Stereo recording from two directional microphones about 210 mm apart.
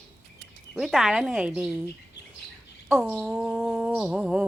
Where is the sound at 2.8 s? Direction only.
10° right (ahead or behind).